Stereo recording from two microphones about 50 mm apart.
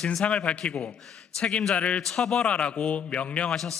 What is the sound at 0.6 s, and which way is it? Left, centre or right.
A man's voice, centre.